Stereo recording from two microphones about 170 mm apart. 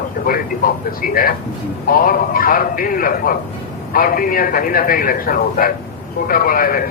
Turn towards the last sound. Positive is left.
turn(degrees=60)  # may be behind; listen again after turning